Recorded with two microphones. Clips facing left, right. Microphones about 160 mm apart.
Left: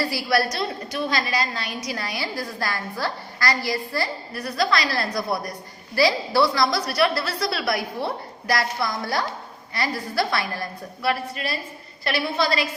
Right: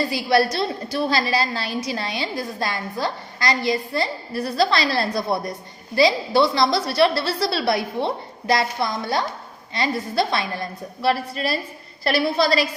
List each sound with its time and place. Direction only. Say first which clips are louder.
0.0 s a woman's voice: right 3 dB; 20° right (ahead or behind)